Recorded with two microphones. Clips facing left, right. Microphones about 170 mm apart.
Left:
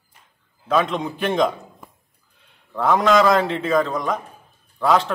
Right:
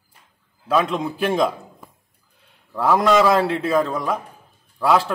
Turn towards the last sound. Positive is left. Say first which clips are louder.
# even
turn(degrees=-10)  # may be behind; listen again after turning